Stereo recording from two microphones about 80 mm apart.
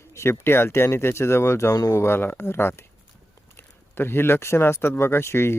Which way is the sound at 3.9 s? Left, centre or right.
Left.